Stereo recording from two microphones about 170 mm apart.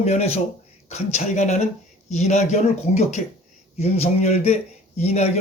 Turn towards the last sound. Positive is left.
turn(degrees=40)  # may be behind; listen again after turning